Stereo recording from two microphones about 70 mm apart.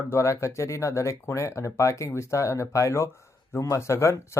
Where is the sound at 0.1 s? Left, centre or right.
Left.